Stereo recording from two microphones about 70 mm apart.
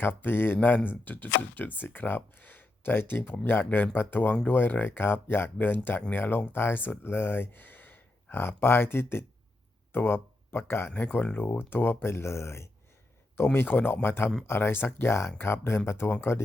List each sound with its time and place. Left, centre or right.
0.0 s speech: left
10.9 s speech: left